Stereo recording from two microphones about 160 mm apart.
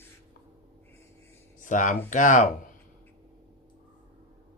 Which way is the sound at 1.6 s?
55° left (ahead or behind).